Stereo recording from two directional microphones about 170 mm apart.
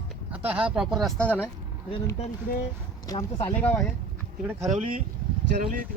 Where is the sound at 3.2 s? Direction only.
35° left (ahead or behind).